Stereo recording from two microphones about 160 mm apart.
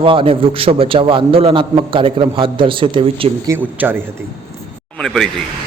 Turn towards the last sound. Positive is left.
turn(degrees=5)  # may be behind; listen again after turning